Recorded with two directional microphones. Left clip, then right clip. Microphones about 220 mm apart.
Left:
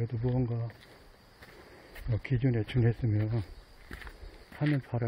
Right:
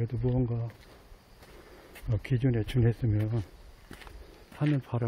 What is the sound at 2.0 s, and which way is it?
A man's voice, 10° right (ahead or behind).